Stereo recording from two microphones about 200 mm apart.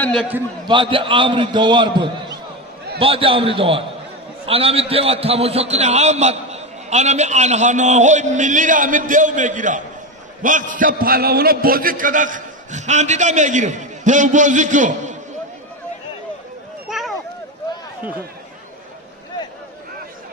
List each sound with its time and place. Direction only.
0.0 s a man's voice: 5° left (ahead or behind)
0.7 s a man's voice: 25° right (ahead or behind)